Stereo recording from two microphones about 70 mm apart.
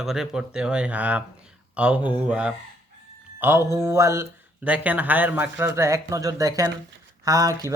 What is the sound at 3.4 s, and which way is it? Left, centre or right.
Speech, right.